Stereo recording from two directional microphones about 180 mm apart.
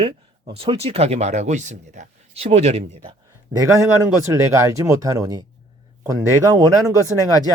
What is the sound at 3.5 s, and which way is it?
Speech, 15° right (ahead or behind).